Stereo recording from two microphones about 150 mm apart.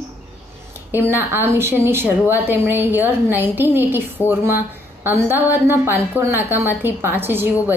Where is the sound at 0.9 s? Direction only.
15° right (ahead or behind).